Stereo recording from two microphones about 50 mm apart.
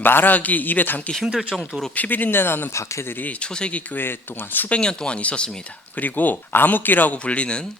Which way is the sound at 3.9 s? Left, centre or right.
Left.